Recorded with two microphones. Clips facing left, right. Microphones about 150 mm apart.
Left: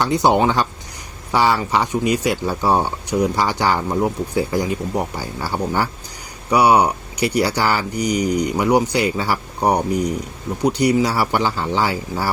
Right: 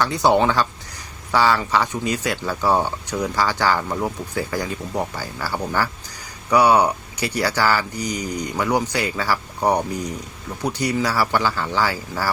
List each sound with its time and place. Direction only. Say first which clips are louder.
0.0 s speech: left 1 dB; 15° left (ahead or behind)